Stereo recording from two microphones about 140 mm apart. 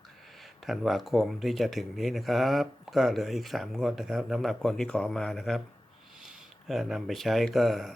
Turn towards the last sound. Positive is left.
turn(degrees=0)  # may be behind; listen again after turning